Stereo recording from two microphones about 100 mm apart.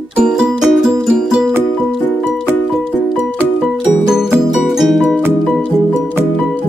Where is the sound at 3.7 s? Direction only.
5° right (ahead or behind).